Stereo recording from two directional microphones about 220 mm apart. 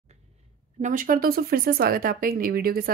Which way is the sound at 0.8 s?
40° right (ahead or behind).